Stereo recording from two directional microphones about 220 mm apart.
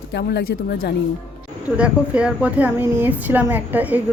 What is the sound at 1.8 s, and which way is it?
A woman's voice, 5° right (ahead or behind).